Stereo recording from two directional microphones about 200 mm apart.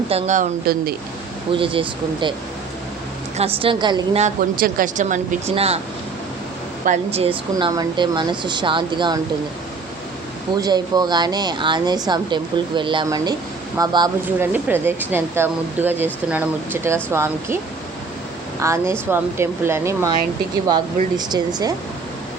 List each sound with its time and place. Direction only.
0.1 s speech: 35° right (ahead or behind)
1.5 s speech: 25° right (ahead or behind)
3.3 s speech: 30° right (ahead or behind)
4.2 s speech: 40° right (ahead or behind)
6.8 s speech: 35° right (ahead or behind)
10.6 s speech: 20° right (ahead or behind)
18.6 s speech: 15° right (ahead or behind)